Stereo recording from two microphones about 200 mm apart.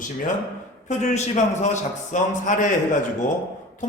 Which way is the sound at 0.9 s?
35° left (ahead or behind).